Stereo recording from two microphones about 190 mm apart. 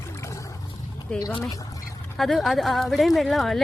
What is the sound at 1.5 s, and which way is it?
Duck, 15° left (ahead or behind).